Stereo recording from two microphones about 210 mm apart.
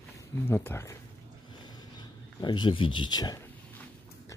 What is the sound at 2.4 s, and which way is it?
Speech, 20° left (ahead or behind).